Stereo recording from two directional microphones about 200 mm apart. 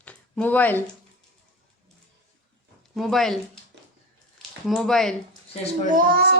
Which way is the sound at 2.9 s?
Centre (ahead or behind).